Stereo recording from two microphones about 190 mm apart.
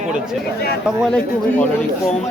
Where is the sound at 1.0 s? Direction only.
5° left (ahead or behind).